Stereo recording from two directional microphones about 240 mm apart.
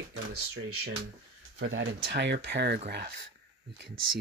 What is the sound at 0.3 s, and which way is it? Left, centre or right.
Speech, right.